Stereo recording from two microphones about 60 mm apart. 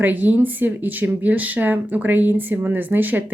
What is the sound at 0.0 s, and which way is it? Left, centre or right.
Speech, right.